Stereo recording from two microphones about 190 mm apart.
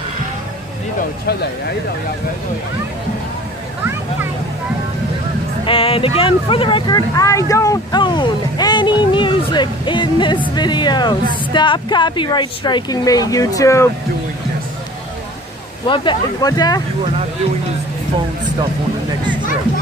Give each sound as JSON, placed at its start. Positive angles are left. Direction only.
{"t": 5.7, "sound": "speech", "side_deg": 30}
{"t": 15.9, "sound": "speech", "side_deg": 25}